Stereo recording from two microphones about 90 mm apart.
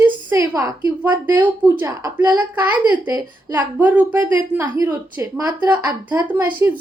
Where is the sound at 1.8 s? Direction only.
40° right (ahead or behind).